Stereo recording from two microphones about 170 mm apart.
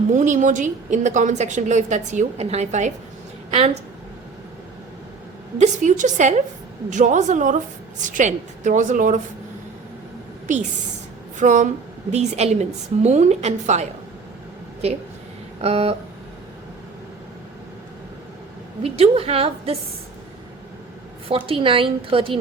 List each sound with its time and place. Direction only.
0.1 s a woman's voice: 45° right (ahead or behind)
5.5 s a woman's voice: 45° right (ahead or behind)
10.4 s a woman's voice: 45° right (ahead or behind)
15.6 s a woman's voice: 35° right (ahead or behind)
18.8 s a woman's voice: 35° right (ahead or behind)
21.2 s a woman's voice: 35° right (ahead or behind)